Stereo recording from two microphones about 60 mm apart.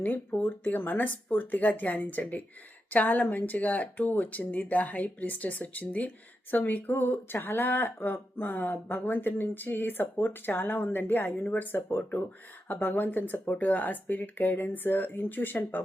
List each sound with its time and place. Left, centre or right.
0.0 s speech: left